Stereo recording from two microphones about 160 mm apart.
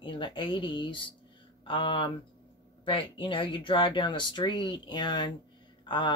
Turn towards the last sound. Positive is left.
turn(degrees=30)  # may be behind; listen again after turning